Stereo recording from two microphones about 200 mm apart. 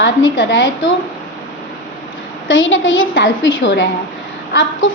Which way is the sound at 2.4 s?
75° left (ahead or behind).